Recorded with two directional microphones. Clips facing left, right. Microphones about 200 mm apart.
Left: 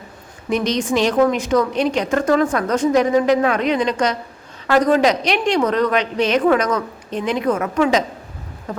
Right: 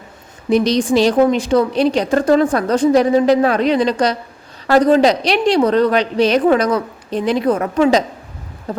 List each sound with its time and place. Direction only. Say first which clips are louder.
0.5 s a woman's voice: right 5 dB; 35° right (ahead or behind)